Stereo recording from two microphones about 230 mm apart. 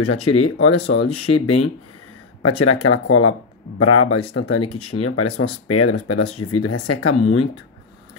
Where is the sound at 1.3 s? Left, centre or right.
Left.